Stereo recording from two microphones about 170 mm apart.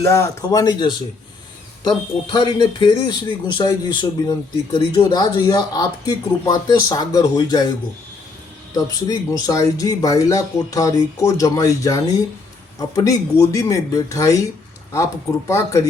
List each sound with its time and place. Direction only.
0.0 s a man's voice: 15° left (ahead or behind)
2.3 s a man's voice: 30° left (ahead or behind)
8.7 s a man's voice: 20° left (ahead or behind)